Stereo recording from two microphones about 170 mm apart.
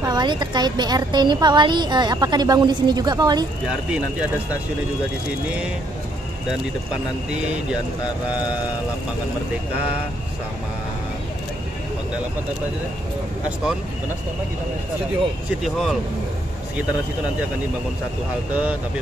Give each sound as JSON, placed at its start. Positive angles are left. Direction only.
{"t": 0.0, "sound": "a woman's voice", "side_deg": -25}
{"t": 15.6, "sound": "speech", "side_deg": 0}